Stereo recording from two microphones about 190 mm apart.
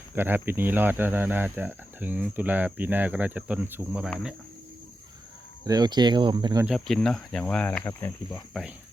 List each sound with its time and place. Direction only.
0.2 s speech: 10° right (ahead or behind)
5.6 s speech: 20° right (ahead or behind)
6.7 s speech: centre (ahead or behind)